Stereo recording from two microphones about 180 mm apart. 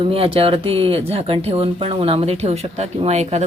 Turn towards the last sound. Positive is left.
turn(degrees=-40)  # may be behind; listen again after turning